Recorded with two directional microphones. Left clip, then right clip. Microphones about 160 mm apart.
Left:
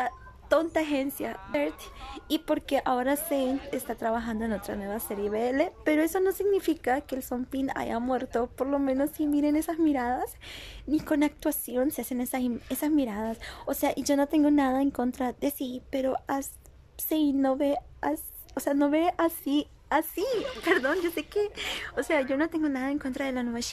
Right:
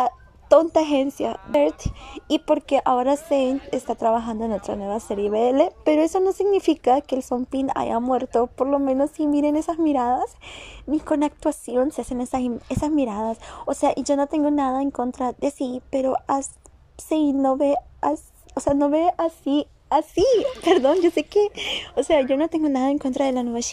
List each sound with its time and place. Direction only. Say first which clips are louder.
0.0 s a woman's voice: right 9 dB; 15° right (ahead or behind); by 20.6 s centre (ahead or behind)
20.6 s speech: right 7 dB; 25° right (ahead or behind)
21.6 s a woman's voice: right 8 dB; 10° right (ahead or behind)
22.5 s speech: right 8 dB; 25° right (ahead or behind)